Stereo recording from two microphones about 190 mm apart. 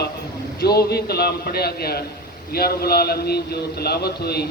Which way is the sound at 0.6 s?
55° left (ahead or behind).